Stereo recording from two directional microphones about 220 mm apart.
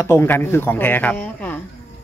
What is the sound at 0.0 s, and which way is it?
Speech, 10° left (ahead or behind).